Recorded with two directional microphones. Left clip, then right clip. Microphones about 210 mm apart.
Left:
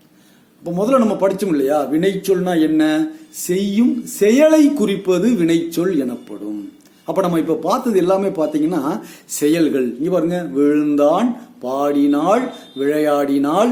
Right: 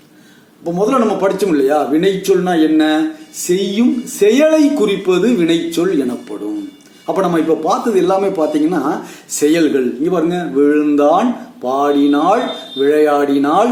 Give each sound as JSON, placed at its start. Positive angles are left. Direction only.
{"t": 0.6, "sound": "speech", "side_deg": 40}
{"t": 7.1, "sound": "speech", "side_deg": 40}